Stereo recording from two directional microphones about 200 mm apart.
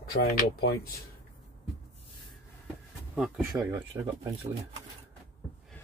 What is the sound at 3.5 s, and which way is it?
Speech, 15° right (ahead or behind).